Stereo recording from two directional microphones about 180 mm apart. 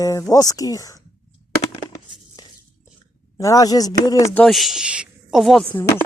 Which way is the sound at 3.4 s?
20° left (ahead or behind).